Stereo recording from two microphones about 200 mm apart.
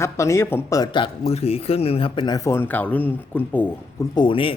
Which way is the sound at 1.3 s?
30° left (ahead or behind).